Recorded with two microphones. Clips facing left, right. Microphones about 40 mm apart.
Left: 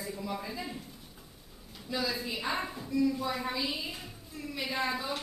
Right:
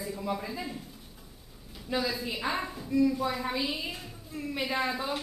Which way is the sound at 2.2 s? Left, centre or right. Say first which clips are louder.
Right 2 dB; centre.